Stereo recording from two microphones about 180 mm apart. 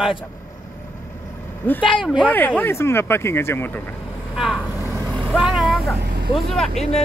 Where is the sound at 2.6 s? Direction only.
15° left (ahead or behind).